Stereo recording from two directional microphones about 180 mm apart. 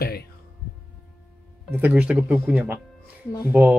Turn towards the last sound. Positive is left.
turn(degrees=-10)  # may be behind; listen again after turning